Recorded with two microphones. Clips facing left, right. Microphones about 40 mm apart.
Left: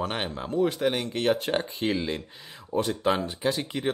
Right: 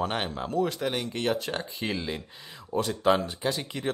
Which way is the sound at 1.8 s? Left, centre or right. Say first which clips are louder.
Left 4 dB; centre.